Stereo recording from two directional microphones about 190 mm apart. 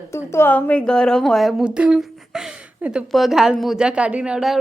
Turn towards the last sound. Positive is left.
turn(degrees=-5)  # may be behind; listen again after turning